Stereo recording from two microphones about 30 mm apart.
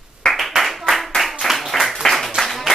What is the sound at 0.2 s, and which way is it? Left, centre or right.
Clapping, left.